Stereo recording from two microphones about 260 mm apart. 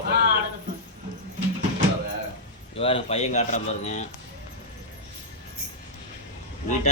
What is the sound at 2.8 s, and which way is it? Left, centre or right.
Speech, left.